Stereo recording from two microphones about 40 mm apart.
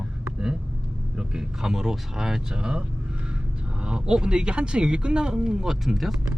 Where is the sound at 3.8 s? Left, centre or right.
Right.